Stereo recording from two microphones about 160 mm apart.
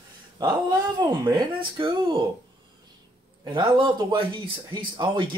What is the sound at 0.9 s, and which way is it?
Speech, 25° right (ahead or behind).